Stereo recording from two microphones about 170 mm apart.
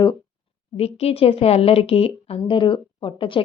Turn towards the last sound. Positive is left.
turn(degrees=30)  # may be behind; listen again after turning